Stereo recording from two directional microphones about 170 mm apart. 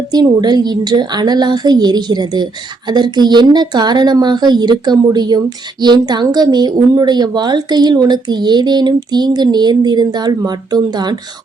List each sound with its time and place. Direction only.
0.1 s a woman's voice: 25° right (ahead or behind)